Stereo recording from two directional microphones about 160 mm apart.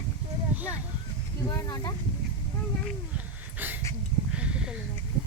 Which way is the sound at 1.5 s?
20° left (ahead or behind).